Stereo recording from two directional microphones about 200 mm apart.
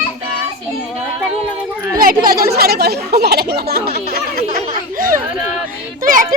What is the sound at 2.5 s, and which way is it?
A child's voice, 50° right (ahead or behind).